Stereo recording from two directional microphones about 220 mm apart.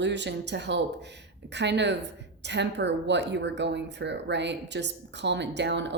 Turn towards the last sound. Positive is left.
turn(degrees=-50)  # may be behind; listen again after turning